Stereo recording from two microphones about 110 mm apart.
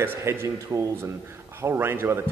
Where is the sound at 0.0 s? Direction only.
20° right (ahead or behind).